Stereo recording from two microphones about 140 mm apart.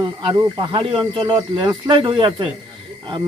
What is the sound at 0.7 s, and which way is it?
Speech, 35° right (ahead or behind).